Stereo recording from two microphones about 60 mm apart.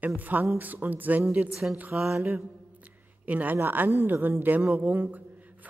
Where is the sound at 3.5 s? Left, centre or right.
Right.